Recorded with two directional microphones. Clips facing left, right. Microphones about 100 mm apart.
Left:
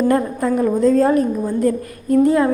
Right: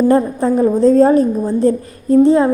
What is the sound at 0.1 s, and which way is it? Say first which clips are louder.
A woman's voice: right 4 dB; 25° right (ahead or behind).